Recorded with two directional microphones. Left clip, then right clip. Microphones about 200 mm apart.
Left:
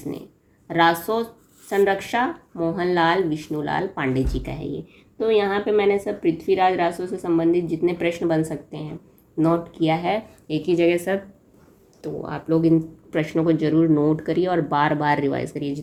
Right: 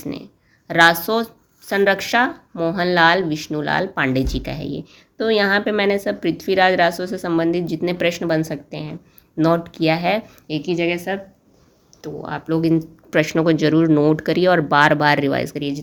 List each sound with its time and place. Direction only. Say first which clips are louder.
0.7 s speech: right 5 dB; 35° right (ahead or behind)
10.4 s speech: left 1 dB; 15° right (ahead or behind)
12.0 s speech: right 1 dB; 15° right (ahead or behind)
12.5 s speech: left 1 dB; 25° right (ahead or behind)